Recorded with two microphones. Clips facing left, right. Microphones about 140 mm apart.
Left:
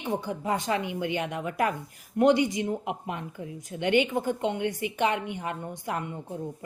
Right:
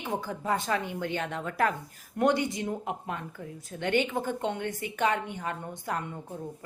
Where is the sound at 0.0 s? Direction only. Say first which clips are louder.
Left 3 dB; 20° left (ahead or behind).